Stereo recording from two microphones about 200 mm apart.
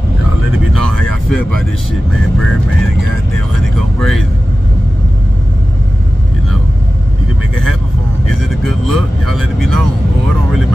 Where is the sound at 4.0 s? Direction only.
Centre (ahead or behind).